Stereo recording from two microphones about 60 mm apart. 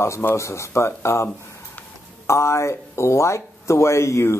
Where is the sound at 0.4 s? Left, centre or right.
Left.